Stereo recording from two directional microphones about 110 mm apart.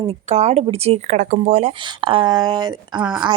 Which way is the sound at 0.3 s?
85° right.